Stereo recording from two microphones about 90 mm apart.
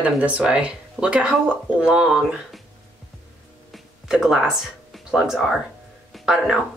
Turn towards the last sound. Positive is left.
turn(degrees=-5)  # may be behind; listen again after turning